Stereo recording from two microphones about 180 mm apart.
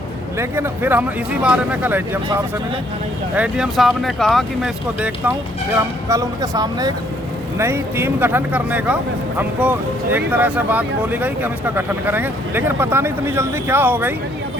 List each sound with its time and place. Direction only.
0.3 s speech: 15° right (ahead or behind)
3.3 s speech: 5° right (ahead or behind)
6.1 s speech: 20° right (ahead or behind)